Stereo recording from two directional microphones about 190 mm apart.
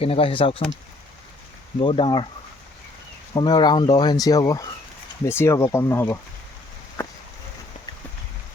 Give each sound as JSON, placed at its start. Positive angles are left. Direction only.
{"t": 0.0, "sound": "speech", "side_deg": 30}
{"t": 1.8, "sound": "speech", "side_deg": 25}
{"t": 3.3, "sound": "speech", "side_deg": 20}